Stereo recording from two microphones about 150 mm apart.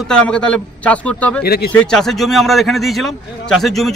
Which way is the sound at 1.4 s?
90° left.